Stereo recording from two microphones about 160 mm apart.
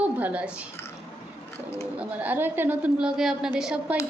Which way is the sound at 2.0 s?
10° right (ahead or behind).